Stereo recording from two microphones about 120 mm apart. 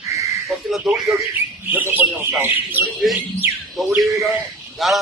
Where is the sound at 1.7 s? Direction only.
15° right (ahead or behind).